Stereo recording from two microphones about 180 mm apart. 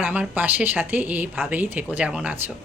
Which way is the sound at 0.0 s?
10° right (ahead or behind).